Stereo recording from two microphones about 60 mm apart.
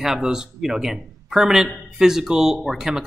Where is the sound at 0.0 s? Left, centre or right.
Centre.